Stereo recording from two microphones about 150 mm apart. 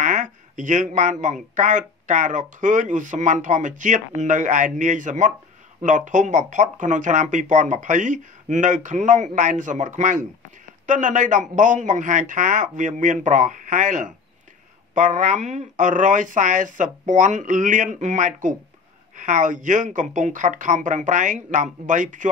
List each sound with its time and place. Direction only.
0.0 s speech: 55° right (ahead or behind)